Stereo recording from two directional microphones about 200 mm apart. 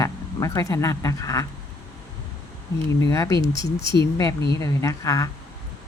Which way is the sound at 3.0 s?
15° left (ahead or behind).